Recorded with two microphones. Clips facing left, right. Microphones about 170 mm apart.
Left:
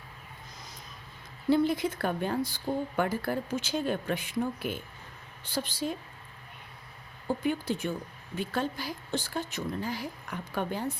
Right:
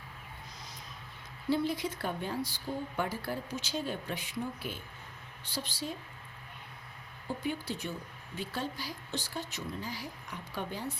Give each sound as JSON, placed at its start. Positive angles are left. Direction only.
{"t": 1.5, "sound": "speech", "side_deg": 55}
{"t": 7.4, "sound": "speech", "side_deg": 50}